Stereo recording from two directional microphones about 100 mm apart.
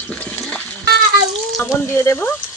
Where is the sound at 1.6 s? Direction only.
25° left (ahead or behind).